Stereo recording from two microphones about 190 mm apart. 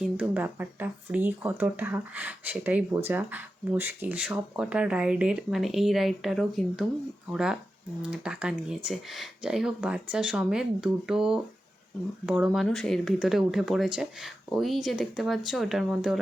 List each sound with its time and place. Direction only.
0.0 s speech: 10° right (ahead or behind)